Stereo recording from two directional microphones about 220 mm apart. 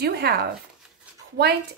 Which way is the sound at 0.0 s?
45° right (ahead or behind).